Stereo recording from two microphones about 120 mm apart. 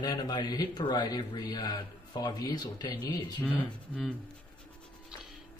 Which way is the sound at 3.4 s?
10° left (ahead or behind).